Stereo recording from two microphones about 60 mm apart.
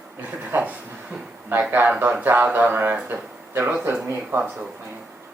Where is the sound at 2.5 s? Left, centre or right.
Right.